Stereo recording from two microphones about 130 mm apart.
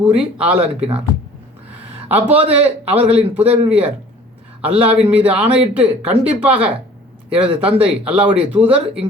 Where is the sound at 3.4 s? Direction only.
50° right (ahead or behind).